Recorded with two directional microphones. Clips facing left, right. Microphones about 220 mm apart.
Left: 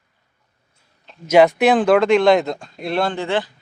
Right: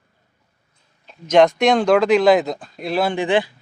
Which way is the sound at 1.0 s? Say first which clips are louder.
Left 1 dB; 5° left (ahead or behind).